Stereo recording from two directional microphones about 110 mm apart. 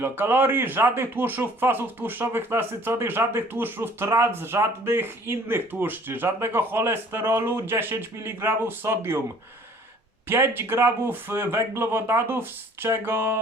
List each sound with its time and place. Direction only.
0.0 s speech: 20° right (ahead or behind)
10.2 s speech: 20° right (ahead or behind)